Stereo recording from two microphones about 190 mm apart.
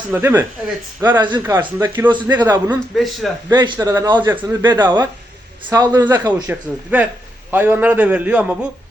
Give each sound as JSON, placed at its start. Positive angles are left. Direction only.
{"t": 0.1, "sound": "a man's voice", "side_deg": -10}
{"t": 1.0, "sound": "a man's voice", "side_deg": -25}
{"t": 2.2, "sound": "a man's voice", "side_deg": -10}
{"t": 2.9, "sound": "speech", "side_deg": 0}
{"t": 3.5, "sound": "a man's voice", "side_deg": -20}
{"t": 4.8, "sound": "a man's voice", "side_deg": -25}
{"t": 6.5, "sound": "a man's voice", "side_deg": -10}